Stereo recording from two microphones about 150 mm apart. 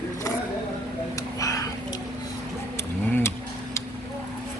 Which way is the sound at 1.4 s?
20° left (ahead or behind).